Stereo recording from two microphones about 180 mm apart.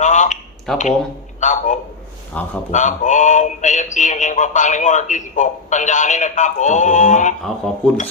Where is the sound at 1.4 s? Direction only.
45° left (ahead or behind).